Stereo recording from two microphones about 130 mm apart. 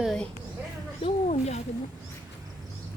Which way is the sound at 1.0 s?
55° left (ahead or behind).